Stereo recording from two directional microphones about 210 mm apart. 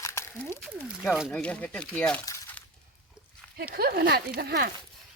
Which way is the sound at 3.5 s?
45° right (ahead or behind).